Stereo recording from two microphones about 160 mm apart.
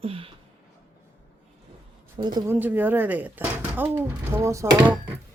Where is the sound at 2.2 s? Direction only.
25° right (ahead or behind).